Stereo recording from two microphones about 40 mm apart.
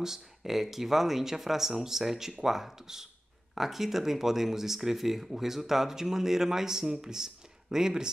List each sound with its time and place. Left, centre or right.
0.0 s speech: centre